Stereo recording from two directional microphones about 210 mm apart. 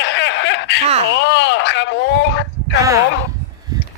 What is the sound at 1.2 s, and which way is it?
Speech, 55° left (ahead or behind).